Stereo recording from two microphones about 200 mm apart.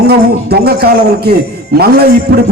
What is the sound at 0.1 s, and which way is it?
A man's voice, 50° right (ahead or behind).